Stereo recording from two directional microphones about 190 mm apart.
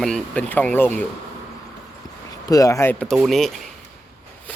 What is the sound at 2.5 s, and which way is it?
Speech, 15° left (ahead or behind).